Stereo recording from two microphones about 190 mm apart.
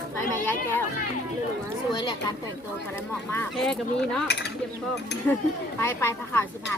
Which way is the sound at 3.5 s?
Centre (ahead or behind).